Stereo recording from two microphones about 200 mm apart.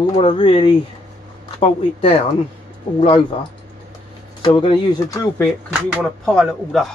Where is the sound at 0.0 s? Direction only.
25° left (ahead or behind).